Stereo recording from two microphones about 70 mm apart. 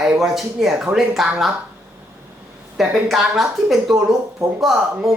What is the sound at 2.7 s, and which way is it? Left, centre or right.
A woman's voice, centre.